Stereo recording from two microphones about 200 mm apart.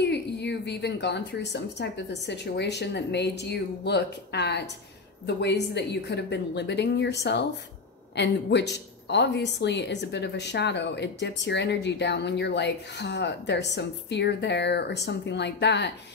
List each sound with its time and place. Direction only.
0.0 s a woman's voice: 55° left (ahead or behind)
8.2 s a woman's voice: 60° left (ahead or behind)